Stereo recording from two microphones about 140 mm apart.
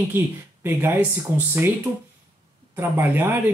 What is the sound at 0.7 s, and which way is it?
Speech, 15° right (ahead or behind).